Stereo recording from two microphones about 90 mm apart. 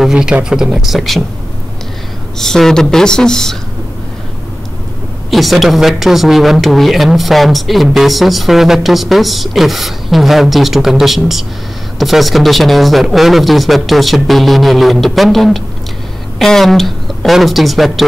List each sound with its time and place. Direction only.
0.0 s speech: 10° right (ahead or behind)
2.3 s speech: 5° left (ahead or behind)
5.3 s speech: centre (ahead or behind)